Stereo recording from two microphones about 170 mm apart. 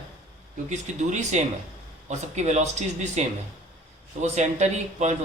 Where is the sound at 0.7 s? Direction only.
45° right (ahead or behind).